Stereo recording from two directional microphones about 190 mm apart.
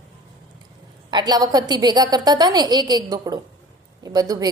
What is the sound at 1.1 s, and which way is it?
A woman's voice, 20° right (ahead or behind).